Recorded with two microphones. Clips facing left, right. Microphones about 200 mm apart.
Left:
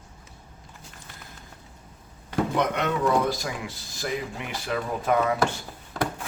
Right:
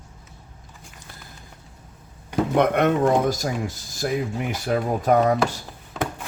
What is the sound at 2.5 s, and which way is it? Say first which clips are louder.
A man's voice: right 9 dB; 55° right (ahead or behind).